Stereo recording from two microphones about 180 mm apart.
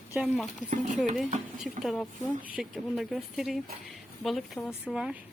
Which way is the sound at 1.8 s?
Centre (ahead or behind).